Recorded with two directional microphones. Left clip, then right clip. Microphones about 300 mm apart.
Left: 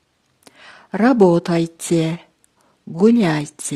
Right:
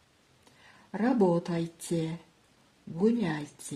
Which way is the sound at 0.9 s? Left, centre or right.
Left.